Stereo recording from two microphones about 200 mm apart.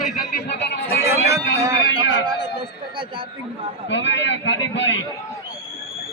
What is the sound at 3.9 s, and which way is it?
A man's voice, 65° left (ahead or behind).